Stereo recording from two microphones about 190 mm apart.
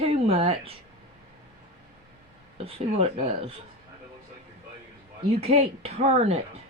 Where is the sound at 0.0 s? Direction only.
30° right (ahead or behind).